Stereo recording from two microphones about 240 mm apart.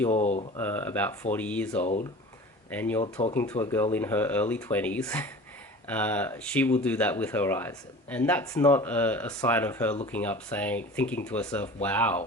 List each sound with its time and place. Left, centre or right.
0.1 s speech: left
0.5 s speech: centre
1.8 s speech: left
2.6 s speech: centre
3.0 s speech: left
3.3 s speech: centre